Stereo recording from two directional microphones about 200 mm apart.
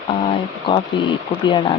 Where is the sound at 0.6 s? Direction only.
25° left (ahead or behind).